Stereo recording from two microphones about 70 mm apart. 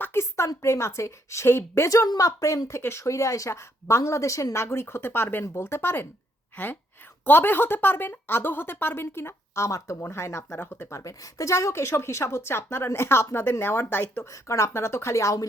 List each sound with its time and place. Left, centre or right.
0.0 s a woman's voice: left
2.0 s a woman's voice: left
7.3 s speech: left
9.6 s a woman's voice: left
10.0 s speech: left
14.3 s a woman's voice: left